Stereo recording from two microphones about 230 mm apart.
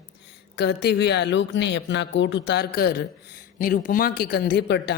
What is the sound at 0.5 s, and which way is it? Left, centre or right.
A man's voice, left.